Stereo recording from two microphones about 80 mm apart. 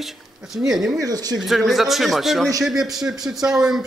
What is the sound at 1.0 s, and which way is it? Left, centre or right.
Speech, right.